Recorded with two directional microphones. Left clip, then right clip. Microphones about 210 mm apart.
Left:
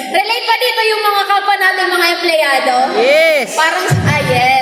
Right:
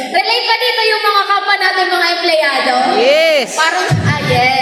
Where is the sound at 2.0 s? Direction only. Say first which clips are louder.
Even; 30° left (ahead or behind).